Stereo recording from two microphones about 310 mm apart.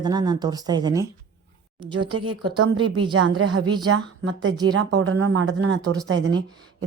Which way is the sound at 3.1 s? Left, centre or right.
Right.